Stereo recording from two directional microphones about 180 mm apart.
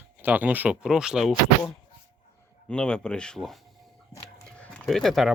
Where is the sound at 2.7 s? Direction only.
5° left (ahead or behind).